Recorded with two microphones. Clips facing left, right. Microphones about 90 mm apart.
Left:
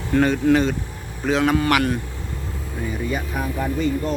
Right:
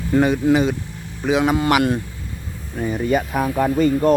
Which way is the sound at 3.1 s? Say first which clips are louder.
Right 6 dB; 60° right (ahead or behind).